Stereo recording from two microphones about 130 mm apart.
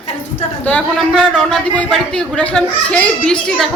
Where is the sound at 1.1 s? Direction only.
Centre (ahead or behind).